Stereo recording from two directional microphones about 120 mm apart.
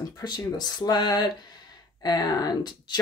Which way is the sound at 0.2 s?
35° left (ahead or behind).